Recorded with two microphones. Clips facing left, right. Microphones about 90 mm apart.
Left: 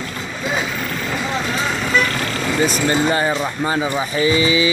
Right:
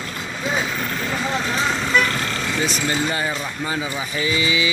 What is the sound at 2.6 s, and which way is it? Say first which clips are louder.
Speech: left 6 dB; 45° left (ahead or behind).